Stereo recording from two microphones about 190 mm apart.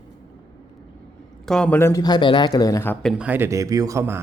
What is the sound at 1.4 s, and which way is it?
A man's voice, 5° left (ahead or behind).